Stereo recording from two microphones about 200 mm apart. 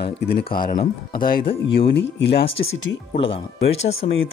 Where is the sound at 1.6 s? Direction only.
60° left (ahead or behind).